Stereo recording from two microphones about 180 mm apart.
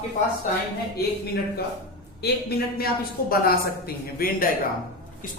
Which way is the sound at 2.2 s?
60° left (ahead or behind).